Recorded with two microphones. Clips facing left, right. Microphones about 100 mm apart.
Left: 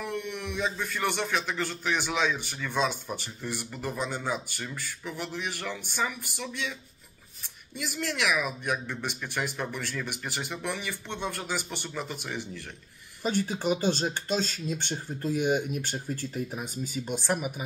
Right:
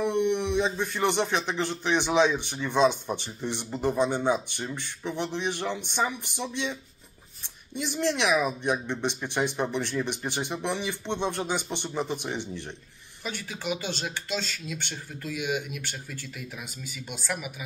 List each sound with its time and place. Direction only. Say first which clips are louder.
0.0 s speech: right 9 dB; 25° right (ahead or behind)
13.2 s speech: left 7 dB; 40° left (ahead or behind)